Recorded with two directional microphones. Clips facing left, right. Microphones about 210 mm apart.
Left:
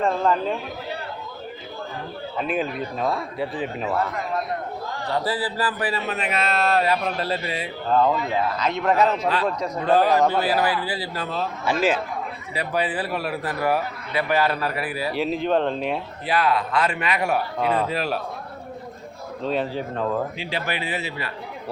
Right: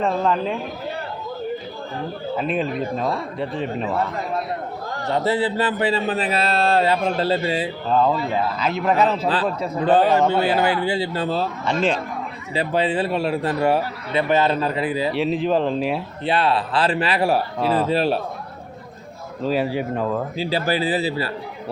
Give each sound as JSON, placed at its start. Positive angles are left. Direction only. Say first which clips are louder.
{"t": 2.4, "sound": "speech", "louder": "right 1 dB", "side_deg": 0}
{"t": 5.0, "sound": "speech", "louder": "right 5 dB", "side_deg": -25}
{"t": 8.6, "sound": "speech", "louder": "right 1 dB", "side_deg": -5}
{"t": 9.0, "sound": "a man's voice", "louder": "right 1 dB", "side_deg": -30}
{"t": 11.6, "sound": "speech", "louder": "left 1 dB", "side_deg": 5}
{"t": 12.5, "sound": "speech", "louder": "right 5 dB", "side_deg": -25}
{"t": 15.1, "sound": "speech", "louder": "left 1 dB", "side_deg": 0}
{"t": 16.2, "sound": "a man's voice", "louder": "right 2 dB", "side_deg": -30}
{"t": 19.4, "sound": "speech", "louder": "right 4 dB", "side_deg": -5}
{"t": 20.4, "sound": "a man's voice", "louder": "right 7 dB", "side_deg": -35}